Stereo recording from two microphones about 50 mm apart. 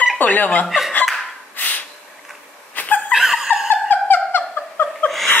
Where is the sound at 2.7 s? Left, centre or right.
Left.